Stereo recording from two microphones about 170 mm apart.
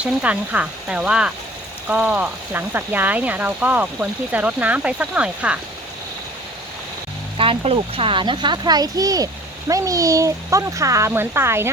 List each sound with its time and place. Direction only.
0.0 s speech: 10° right (ahead or behind)
7.3 s a child's voice: 35° right (ahead or behind); by 11.7 s 15° right (ahead or behind)